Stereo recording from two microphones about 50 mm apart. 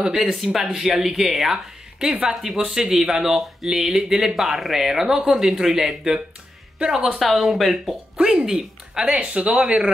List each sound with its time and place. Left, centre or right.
0.0 s speech: centre
2.0 s speech: centre
7.1 s speech: centre
9.0 s speech: right